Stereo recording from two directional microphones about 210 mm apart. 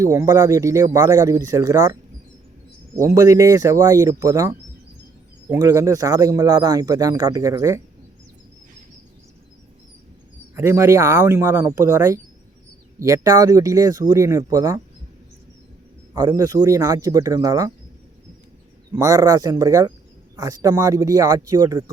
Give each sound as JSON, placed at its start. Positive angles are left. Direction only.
{"t": 0.0, "sound": "speech", "side_deg": -15}
{"t": 3.0, "sound": "speech", "side_deg": -15}
{"t": 10.5, "sound": "speech", "side_deg": -10}
{"t": 16.1, "sound": "speech", "side_deg": -15}
{"t": 18.9, "sound": "speech", "side_deg": -15}